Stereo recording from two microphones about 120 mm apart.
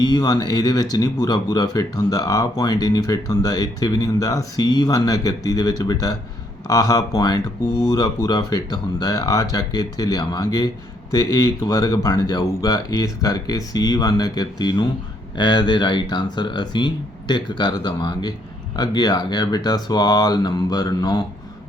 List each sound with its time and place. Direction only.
0.0 s speech: 35° left (ahead or behind)